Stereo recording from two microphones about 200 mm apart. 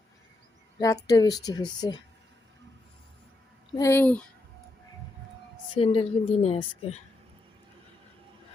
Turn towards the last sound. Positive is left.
turn(degrees=30)  # may be behind; listen again after turning